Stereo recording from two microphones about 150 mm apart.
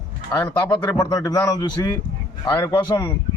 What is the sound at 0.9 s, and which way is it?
A man's voice, 25° left (ahead or behind).